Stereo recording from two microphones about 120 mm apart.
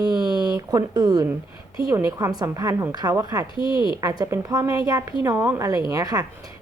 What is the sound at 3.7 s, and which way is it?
Speech, 40° left (ahead or behind).